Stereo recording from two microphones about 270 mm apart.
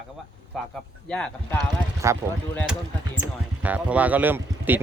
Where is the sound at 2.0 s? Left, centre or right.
Centre.